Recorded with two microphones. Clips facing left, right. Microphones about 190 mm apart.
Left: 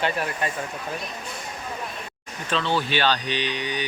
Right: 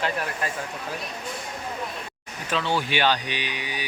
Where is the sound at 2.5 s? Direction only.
10° right (ahead or behind).